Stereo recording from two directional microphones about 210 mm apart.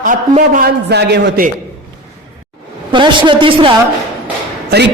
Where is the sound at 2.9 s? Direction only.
25° right (ahead or behind).